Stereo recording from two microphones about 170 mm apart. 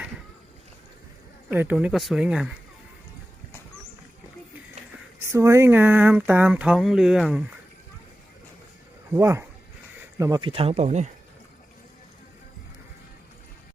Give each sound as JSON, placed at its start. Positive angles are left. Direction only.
{"t": 1.5, "sound": "speech", "side_deg": -10}
{"t": 5.3, "sound": "speech", "side_deg": -15}
{"t": 9.1, "sound": "speech", "side_deg": -15}
{"t": 10.4, "sound": "speech", "side_deg": -35}